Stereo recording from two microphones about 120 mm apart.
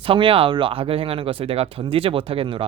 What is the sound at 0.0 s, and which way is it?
Speech, 50° right (ahead or behind).